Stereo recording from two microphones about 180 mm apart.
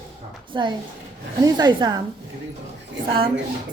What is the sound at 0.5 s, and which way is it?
A woman's voice, 25° right (ahead or behind).